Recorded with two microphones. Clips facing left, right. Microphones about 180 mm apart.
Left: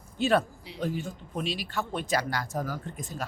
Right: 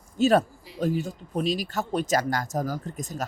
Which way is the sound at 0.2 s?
40° right (ahead or behind).